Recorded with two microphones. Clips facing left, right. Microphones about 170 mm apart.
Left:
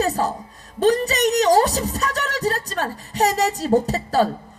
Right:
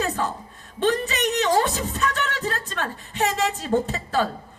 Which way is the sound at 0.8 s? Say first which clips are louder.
Left 5 dB; 40° left (ahead or behind).